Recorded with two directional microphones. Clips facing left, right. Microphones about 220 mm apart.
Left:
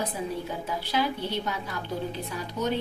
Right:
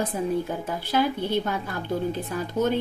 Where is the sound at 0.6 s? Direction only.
50° right (ahead or behind).